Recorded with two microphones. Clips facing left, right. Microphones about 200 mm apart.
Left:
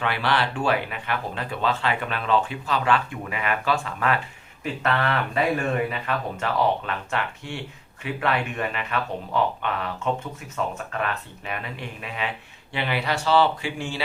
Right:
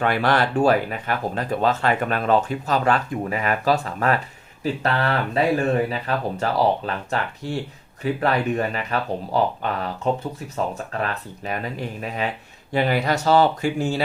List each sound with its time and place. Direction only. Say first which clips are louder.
0.0 s speech: right 5 dB; 45° right (ahead or behind)